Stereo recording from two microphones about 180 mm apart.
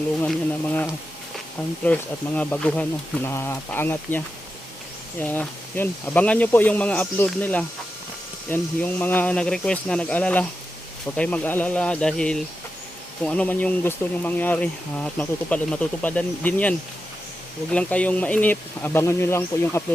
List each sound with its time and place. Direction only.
0.2 s speech: 10° left (ahead or behind)
5.2 s speech: 10° left (ahead or behind)